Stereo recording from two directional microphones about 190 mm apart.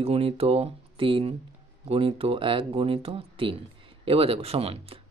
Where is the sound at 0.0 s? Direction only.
30° right (ahead or behind).